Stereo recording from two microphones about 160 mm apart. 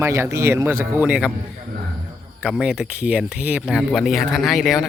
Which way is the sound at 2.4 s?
5° right (ahead or behind).